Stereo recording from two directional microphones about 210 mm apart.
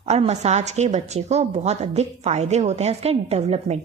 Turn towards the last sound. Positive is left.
turn(degrees=-30)  # may be behind; listen again after turning